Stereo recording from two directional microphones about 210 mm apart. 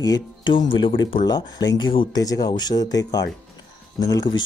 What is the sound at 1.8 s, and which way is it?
Speech, 25° left (ahead or behind).